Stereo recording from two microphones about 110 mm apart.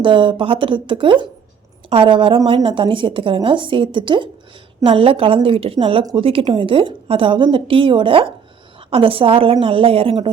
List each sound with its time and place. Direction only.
0.0 s a woman's voice: 50° right (ahead or behind)